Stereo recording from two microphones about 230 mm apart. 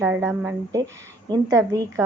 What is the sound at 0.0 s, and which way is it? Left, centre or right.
Speech, centre.